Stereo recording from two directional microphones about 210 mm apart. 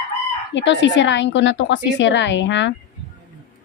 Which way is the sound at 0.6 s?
60° left (ahead or behind).